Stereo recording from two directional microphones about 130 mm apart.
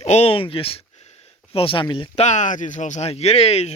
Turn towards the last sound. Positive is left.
turn(degrees=55)  # may be behind; listen again after turning